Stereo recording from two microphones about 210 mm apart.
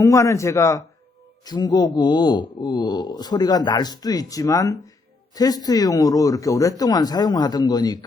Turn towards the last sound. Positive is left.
turn(degrees=20)  # may be behind; listen again after turning